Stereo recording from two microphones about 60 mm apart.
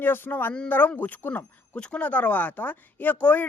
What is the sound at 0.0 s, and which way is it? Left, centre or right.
Speech, left.